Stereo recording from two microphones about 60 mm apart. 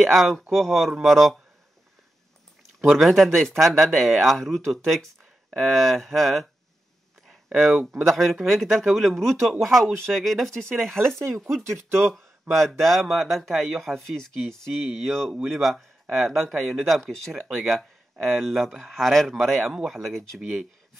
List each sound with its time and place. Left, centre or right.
0.0 s speech: centre
2.9 s speech: centre
7.5 s speech: centre
11.1 s speech: right
12.5 s speech: centre